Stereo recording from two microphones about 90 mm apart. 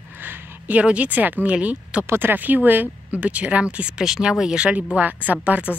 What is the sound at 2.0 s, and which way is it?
A woman's voice, 25° right (ahead or behind).